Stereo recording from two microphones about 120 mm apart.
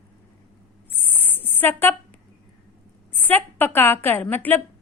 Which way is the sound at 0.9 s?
15° left (ahead or behind).